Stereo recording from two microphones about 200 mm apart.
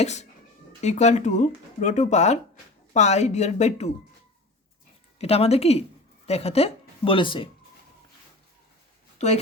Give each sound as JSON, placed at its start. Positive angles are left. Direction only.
{"t": 0.0, "sound": "speech", "side_deg": 35}
{"t": 5.1, "sound": "speech", "side_deg": 30}
{"t": 9.1, "sound": "speech", "side_deg": 35}